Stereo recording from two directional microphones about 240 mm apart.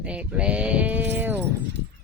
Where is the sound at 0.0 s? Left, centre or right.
Centre.